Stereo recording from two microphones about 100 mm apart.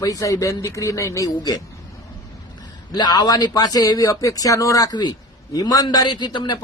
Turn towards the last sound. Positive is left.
turn(degrees=50)  # may be behind; listen again after turning